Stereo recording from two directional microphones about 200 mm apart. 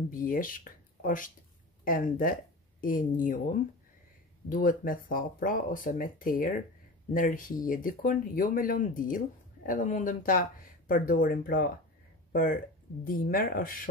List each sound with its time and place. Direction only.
0.1 s speech: 45° left (ahead or behind)
4.5 s speech: 45° left (ahead or behind)